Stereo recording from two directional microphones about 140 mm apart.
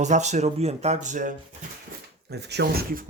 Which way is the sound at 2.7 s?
90° right.